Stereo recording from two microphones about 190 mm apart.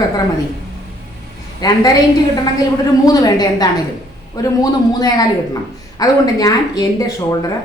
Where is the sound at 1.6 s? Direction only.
20° left (ahead or behind).